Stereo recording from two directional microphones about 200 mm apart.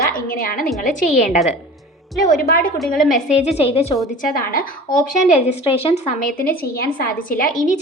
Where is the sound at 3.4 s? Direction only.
30° left (ahead or behind).